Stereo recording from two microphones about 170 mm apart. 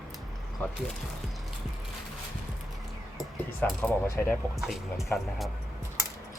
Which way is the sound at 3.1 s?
Centre (ahead or behind).